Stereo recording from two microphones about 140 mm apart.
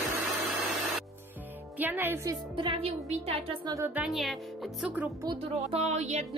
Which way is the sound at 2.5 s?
40° right (ahead or behind).